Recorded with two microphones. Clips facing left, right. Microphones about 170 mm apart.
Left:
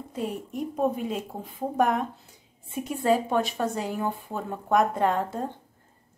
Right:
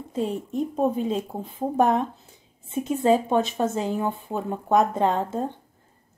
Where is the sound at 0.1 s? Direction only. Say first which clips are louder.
Right 5 dB; 25° right (ahead or behind).